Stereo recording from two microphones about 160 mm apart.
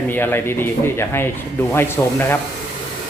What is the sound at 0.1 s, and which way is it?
Speech, 15° left (ahead or behind).